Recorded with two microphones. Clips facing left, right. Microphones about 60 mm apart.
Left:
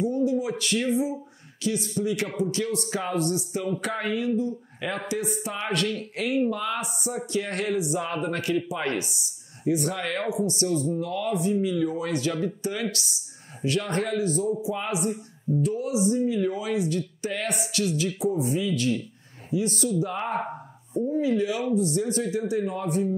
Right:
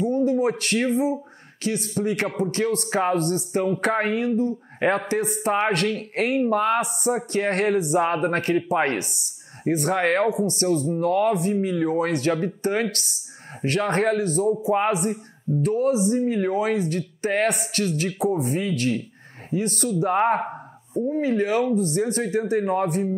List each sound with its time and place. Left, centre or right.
0.1 s speech: right
2.6 s speech: right
13.7 s speech: right
20.5 s a sound: right
21.1 s speech: right
21.7 s speech: right